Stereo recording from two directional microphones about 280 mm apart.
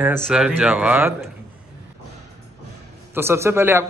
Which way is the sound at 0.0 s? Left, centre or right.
Centre.